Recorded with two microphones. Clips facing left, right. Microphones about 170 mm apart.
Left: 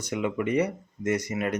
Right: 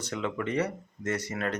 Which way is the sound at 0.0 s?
10° left (ahead or behind).